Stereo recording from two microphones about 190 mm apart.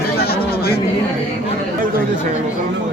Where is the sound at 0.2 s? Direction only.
55° left (ahead or behind).